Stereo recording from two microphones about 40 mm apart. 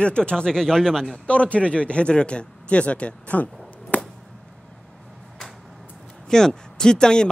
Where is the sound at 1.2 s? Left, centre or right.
Left.